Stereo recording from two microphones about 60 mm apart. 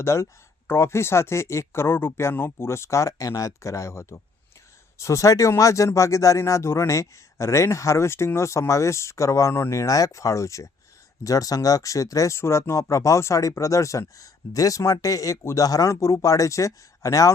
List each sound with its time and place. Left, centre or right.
0.0 s speech: left
6.4 s speech: left
9.5 s speech: left
11.2 s speech: left
14.2 s speech: left